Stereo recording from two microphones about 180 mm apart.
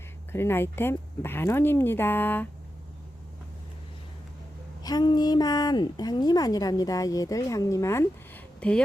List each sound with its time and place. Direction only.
0.3 s speech: 15° left (ahead or behind)
4.8 s a woman's voice: 20° left (ahead or behind)